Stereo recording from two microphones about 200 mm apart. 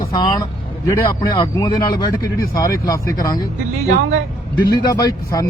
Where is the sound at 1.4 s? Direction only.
20° left (ahead or behind).